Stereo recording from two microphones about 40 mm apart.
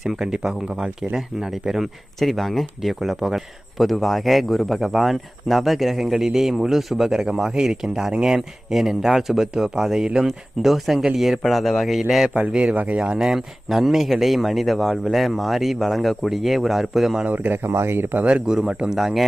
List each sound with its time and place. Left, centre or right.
0.0 s speech: centre
0.3 s speech: centre
7.3 s speech: centre
12.5 s speech: right
12.7 s speech: right
13.1 s speech: centre
17.2 s a man's voice: right
17.6 s speech: right
18.3 s speech: right
18.9 s speech: centre